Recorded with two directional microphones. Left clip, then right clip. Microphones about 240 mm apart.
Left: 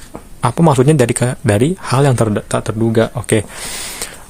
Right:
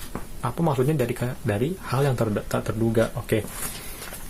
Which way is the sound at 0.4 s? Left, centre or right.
Left.